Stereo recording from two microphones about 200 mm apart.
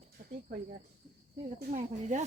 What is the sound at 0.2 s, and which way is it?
Speech, 45° right (ahead or behind).